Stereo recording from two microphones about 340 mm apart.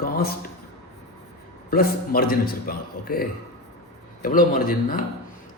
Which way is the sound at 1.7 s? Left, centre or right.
Left.